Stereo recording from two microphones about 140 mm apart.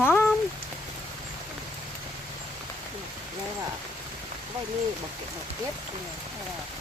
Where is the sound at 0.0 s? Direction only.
15° left (ahead or behind).